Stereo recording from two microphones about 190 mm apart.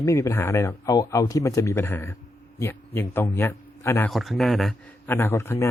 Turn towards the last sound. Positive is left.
turn(degrees=15)  # may be behind; listen again after turning